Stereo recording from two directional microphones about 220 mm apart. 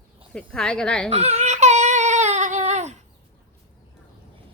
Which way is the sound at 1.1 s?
30° right (ahead or behind).